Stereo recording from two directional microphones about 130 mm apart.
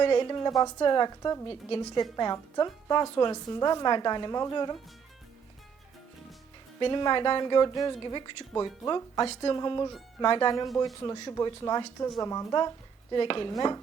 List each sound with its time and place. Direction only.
0.0 s a woman's voice: 35° left (ahead or behind)
1.5 s a woman's voice: 40° left (ahead or behind)
6.7 s a woman's voice: 35° left (ahead or behind)
11.0 s speech: 25° left (ahead or behind)